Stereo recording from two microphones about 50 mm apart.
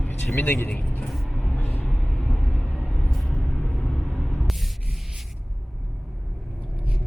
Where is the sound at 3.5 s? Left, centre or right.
Left.